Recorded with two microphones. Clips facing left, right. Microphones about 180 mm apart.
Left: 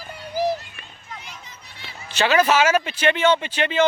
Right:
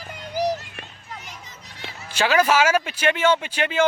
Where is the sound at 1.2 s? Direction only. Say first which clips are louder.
Even; 45° right (ahead or behind).